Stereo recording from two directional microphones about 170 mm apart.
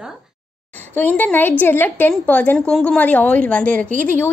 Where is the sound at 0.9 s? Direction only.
10° left (ahead or behind).